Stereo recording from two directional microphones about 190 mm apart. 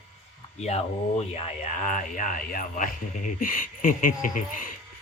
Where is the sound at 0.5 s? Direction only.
35° left (ahead or behind).